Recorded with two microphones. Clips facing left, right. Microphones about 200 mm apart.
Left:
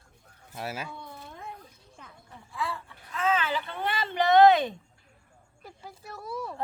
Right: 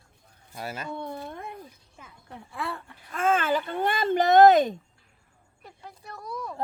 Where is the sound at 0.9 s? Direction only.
60° right (ahead or behind); by 4.8 s 45° right (ahead or behind).